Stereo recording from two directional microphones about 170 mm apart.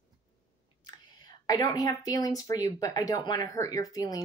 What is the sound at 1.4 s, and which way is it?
Speech, 20° left (ahead or behind).